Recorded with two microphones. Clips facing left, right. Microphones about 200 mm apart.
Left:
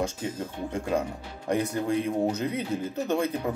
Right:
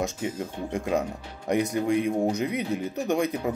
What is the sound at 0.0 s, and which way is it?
Speech, 15° right (ahead or behind).